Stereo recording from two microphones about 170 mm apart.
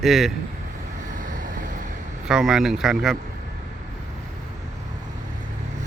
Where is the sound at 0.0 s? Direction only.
Centre (ahead or behind).